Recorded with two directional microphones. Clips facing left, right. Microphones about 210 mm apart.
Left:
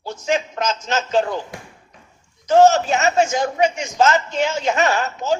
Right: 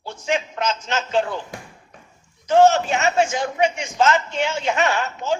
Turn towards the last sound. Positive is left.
turn(degrees=40)  # may be behind; listen again after turning